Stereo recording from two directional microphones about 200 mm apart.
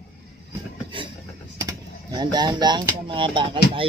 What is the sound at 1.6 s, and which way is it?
Speech, 20° right (ahead or behind).